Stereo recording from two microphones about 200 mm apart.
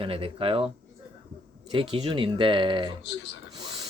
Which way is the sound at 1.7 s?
30° right (ahead or behind).